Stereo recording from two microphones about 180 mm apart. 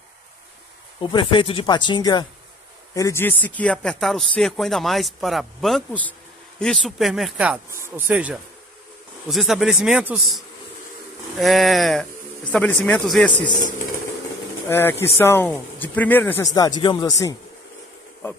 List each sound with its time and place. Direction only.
1.0 s a man's voice: 30° left (ahead or behind); by 13.3 s 10° left (ahead or behind)
13.3 s speech: 25° left (ahead or behind)
14.7 s speech: 15° left (ahead or behind)
16.5 s speech: 20° left (ahead or behind)